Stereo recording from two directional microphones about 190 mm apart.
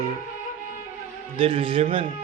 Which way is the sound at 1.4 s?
30° right (ahead or behind).